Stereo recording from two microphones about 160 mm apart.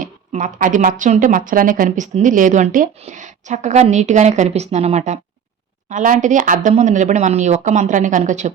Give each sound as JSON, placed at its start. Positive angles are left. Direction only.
{"t": 0.0, "sound": "a woman's voice", "side_deg": -55}